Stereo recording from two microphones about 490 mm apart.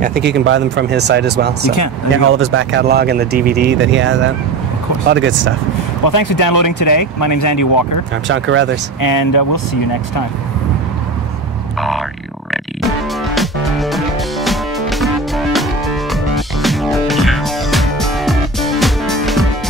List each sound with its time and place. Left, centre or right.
0.0 s speech: centre
6.0 s speech: left
8.3 s speech: right
9.0 s speech: left
12.8 s music: centre